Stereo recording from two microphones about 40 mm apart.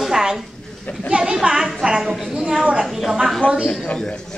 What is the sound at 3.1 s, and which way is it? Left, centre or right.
Speech, centre.